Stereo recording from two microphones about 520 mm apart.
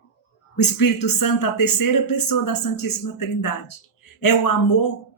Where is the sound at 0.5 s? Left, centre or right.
Left.